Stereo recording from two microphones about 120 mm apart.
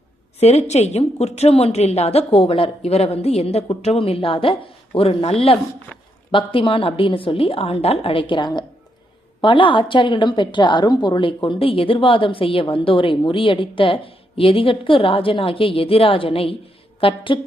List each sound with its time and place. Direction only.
0.3 s a woman's voice: 65° left (ahead or behind)
6.3 s a woman's voice: 45° left (ahead or behind)